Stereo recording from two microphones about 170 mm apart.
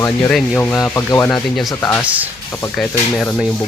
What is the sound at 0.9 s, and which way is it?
Rub, 15° left (ahead or behind).